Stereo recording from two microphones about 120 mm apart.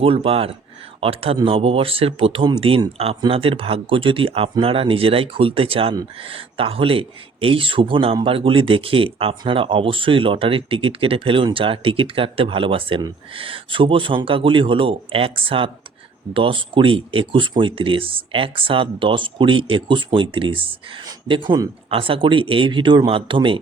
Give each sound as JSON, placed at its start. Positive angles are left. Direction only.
{"t": 0.0, "sound": "speech", "side_deg": -50}